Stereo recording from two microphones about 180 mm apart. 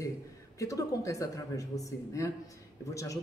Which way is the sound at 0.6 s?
15° left (ahead or behind).